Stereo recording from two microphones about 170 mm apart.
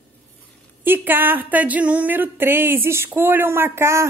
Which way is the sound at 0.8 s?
10° right (ahead or behind).